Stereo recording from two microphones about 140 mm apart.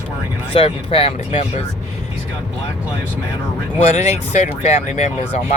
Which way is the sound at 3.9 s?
55° left (ahead or behind).